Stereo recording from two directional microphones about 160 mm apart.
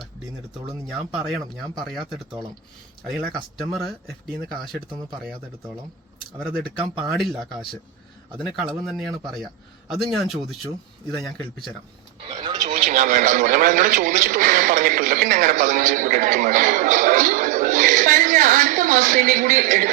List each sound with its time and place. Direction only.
0.0 s speech: centre (ahead or behind)
3.6 s speech: centre (ahead or behind)
6.6 s speech: centre (ahead or behind)
12.3 s a sound: 30° right (ahead or behind)
12.6 s a man's voice: 50° right (ahead or behind)